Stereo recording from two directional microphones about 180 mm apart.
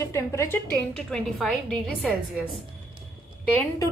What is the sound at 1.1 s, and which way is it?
A woman's voice, 5° left (ahead or behind).